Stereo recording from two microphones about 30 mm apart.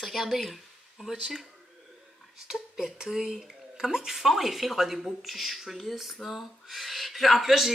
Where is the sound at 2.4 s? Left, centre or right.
Centre.